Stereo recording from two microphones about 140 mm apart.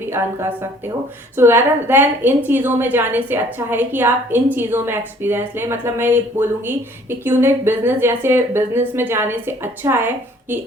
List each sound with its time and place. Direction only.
1.4 s a woman's voice: 15° right (ahead or behind)